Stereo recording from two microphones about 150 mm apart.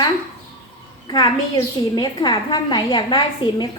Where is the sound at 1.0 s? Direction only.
25° left (ahead or behind).